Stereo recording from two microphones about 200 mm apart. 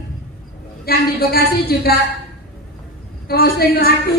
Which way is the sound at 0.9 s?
50° left (ahead or behind).